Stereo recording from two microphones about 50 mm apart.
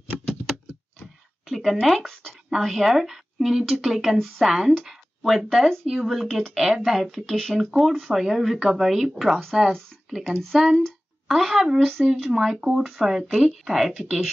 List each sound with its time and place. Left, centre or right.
1.5 s a woman's voice: centre
2.5 s a woman's voice: centre
13.9 s speech: centre